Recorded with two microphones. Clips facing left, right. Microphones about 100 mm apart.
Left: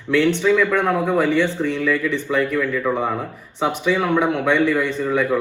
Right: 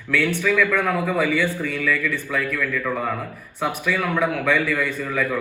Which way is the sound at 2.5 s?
25° left (ahead or behind).